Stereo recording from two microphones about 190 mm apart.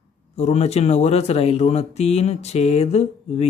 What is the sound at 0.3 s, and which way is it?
Speech, 35° left (ahead or behind).